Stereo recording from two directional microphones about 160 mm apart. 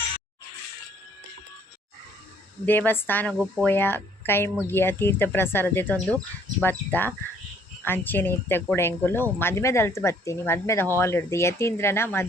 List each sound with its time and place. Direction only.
2.6 s speech: 10° left (ahead or behind)